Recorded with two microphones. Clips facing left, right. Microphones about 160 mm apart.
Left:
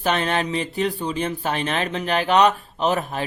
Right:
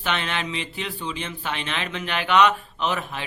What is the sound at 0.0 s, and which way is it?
Speech, 40° left (ahead or behind).